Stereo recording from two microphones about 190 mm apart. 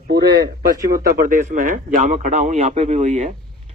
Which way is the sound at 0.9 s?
50° right (ahead or behind).